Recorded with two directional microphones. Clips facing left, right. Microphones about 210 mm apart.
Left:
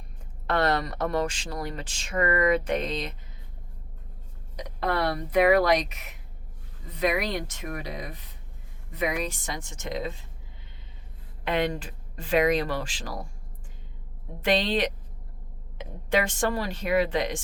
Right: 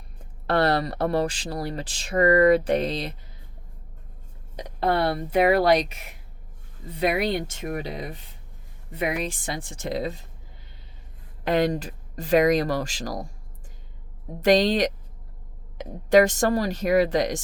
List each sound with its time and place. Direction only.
0.4 s speech: 35° right (ahead or behind)
4.5 s speech: 30° right (ahead or behind)
11.4 s speech: 40° right (ahead or behind)
14.4 s speech: 40° right (ahead or behind)